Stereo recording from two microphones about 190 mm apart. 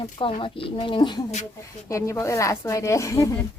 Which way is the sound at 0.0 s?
25° left (ahead or behind).